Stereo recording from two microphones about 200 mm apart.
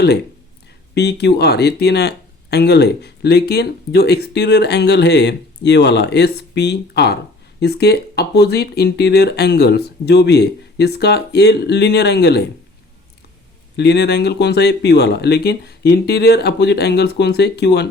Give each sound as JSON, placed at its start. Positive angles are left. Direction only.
{"t": 0.9, "sound": "speech", "side_deg": 55}
{"t": 13.7, "sound": "speech", "side_deg": 55}